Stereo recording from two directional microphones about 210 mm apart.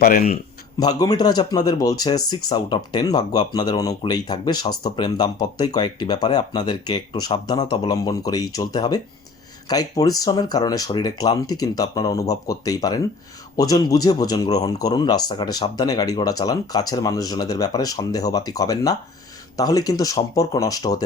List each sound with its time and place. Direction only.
0.0 s speech: 45° left (ahead or behind)
0.8 s speech: 20° left (ahead or behind)